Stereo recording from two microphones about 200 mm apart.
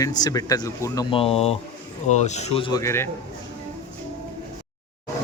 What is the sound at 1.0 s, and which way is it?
Speech, 30° left (ahead or behind).